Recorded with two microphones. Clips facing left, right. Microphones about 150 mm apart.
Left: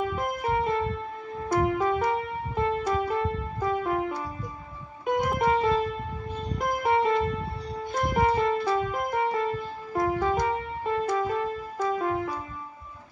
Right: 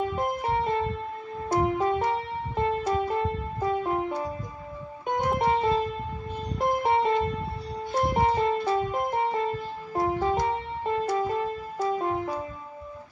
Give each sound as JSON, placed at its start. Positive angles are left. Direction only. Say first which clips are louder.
{"t": 0.0, "sound": "music", "louder": "right 1 dB", "side_deg": -30}
{"t": 1.5, "sound": "keyboard", "louder": "even", "side_deg": -30}
{"t": 5.2, "sound": "music", "louder": "right 1 dB", "side_deg": -30}